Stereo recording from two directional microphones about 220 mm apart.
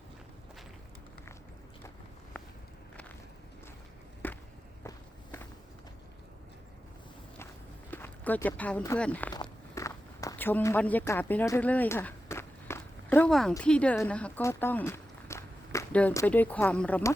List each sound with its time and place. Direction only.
4.2 s walk: 10° left (ahead or behind)
7.9 s speech: 10° left (ahead or behind)
9.3 s walk: 15° left (ahead or behind)
13.5 s speech: 5° left (ahead or behind)